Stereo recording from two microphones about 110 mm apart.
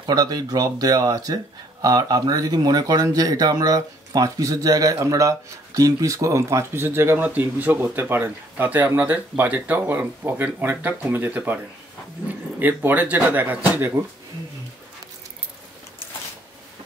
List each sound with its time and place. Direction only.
0.0 s speech: 35° right (ahead or behind); by 13.9 s 15° right (ahead or behind)